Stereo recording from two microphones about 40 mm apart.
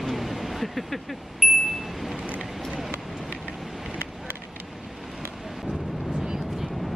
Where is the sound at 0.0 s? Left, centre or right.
Centre.